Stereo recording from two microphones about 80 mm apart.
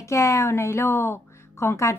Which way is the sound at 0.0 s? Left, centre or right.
Left.